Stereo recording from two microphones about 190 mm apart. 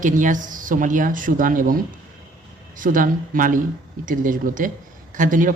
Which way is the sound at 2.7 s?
45° right (ahead or behind).